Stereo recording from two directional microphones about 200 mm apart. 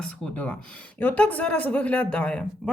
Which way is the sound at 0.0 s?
5° left (ahead or behind).